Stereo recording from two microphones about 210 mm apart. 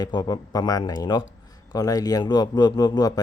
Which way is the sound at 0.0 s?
20° left (ahead or behind).